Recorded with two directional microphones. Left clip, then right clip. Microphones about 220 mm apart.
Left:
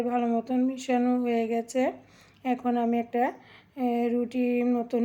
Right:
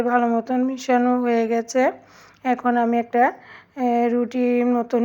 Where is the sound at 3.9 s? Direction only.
40° right (ahead or behind).